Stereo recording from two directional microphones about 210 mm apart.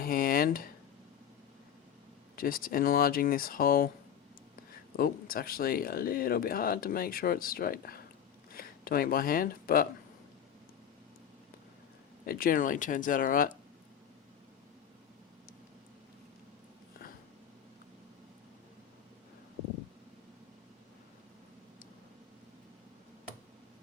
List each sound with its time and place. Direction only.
0.0 s speech: 45° left (ahead or behind)
2.3 s speech: 45° left (ahead or behind)
4.9 s speech: 45° left (ahead or behind)
12.2 s speech: 45° left (ahead or behind)